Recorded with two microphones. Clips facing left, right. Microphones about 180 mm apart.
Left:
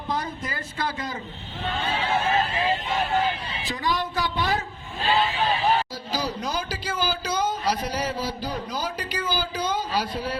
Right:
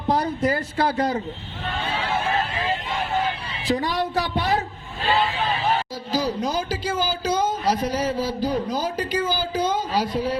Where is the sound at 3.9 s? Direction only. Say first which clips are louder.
Right 3 dB; 70° right (ahead or behind).